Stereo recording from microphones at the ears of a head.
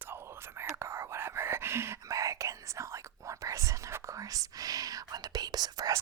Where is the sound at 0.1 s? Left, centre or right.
Right.